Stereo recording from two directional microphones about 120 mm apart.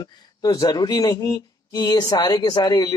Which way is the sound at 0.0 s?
35° left (ahead or behind).